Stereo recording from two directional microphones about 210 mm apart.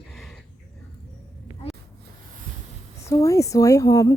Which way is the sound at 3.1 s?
15° left (ahead or behind).